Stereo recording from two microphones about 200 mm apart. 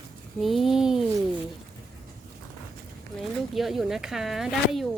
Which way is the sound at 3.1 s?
Centre (ahead or behind).